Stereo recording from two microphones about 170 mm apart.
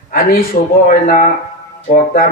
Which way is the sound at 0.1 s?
60° left (ahead or behind).